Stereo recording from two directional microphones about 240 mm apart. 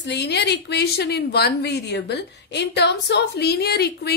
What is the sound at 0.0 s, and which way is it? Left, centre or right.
A woman's voice, left.